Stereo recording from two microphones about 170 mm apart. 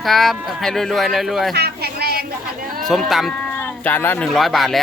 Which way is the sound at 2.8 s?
Centre (ahead or behind).